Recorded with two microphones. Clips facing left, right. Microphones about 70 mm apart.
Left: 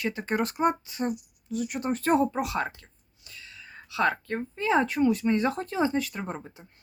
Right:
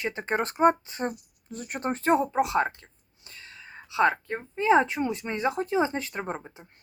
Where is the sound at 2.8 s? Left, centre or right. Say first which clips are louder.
Right 2 dB; right.